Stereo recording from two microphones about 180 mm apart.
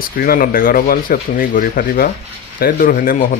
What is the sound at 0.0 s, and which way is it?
Speech, 55° left (ahead or behind).